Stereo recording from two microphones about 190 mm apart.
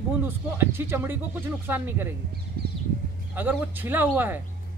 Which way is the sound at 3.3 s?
10° right (ahead or behind).